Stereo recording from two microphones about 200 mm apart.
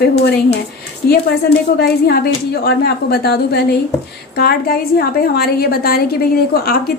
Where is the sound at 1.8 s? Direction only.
50° left (ahead or behind).